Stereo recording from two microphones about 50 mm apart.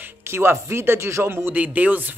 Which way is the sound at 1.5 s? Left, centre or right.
Right.